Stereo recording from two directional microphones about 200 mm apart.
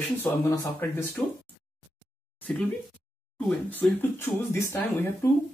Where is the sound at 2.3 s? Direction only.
5° left (ahead or behind).